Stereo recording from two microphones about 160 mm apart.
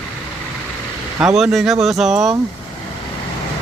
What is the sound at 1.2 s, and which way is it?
Speech, 5° right (ahead or behind).